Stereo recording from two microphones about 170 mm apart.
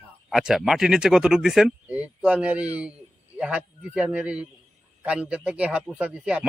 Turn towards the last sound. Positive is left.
turn(degrees=-5)  # may be behind; listen again after turning